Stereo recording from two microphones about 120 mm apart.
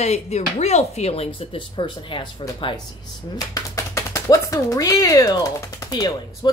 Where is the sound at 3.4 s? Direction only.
30° left (ahead or behind).